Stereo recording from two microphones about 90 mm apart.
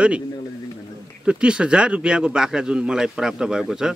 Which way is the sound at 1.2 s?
10° right (ahead or behind).